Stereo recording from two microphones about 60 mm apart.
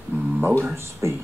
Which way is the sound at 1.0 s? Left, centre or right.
Right.